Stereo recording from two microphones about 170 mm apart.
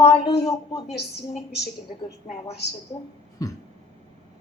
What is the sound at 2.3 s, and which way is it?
Speech, 40° left (ahead or behind).